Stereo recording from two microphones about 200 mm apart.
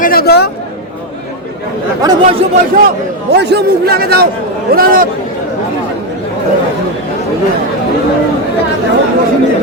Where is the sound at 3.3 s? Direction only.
55° right (ahead or behind).